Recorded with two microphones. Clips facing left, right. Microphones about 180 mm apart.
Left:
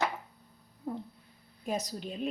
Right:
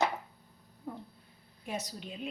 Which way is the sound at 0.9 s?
40° left (ahead or behind).